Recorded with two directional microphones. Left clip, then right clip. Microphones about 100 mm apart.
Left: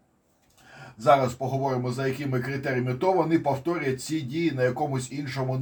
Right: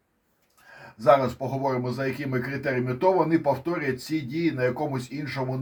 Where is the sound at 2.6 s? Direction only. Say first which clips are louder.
Right 4 dB; 35° right (ahead or behind).